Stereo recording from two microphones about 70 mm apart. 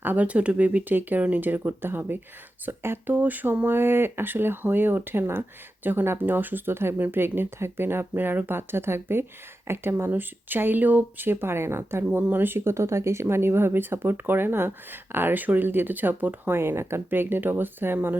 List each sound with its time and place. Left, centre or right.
0.0 s speech: right